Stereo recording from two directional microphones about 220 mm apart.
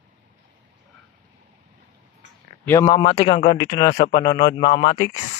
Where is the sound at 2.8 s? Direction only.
25° left (ahead or behind).